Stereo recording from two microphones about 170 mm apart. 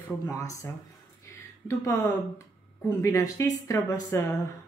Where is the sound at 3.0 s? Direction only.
20° left (ahead or behind).